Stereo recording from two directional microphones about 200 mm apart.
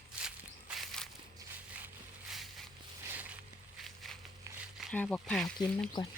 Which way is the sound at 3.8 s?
Centre (ahead or behind).